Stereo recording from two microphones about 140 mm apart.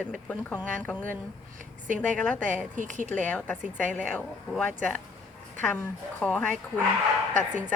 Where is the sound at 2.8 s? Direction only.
65° right (ahead or behind).